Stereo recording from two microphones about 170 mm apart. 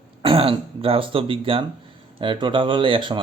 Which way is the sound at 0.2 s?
35° right (ahead or behind).